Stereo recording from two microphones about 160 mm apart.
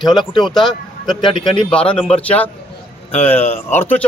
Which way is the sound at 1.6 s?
5° left (ahead or behind).